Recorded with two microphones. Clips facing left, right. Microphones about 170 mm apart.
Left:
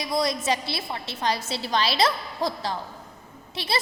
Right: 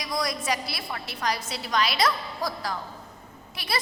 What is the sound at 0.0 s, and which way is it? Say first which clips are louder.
A woman's voice: left 4 dB; 25° left (ahead or behind).